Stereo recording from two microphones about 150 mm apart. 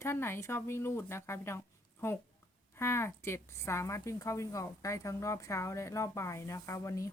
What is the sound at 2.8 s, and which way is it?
A woman's voice, 15° left (ahead or behind).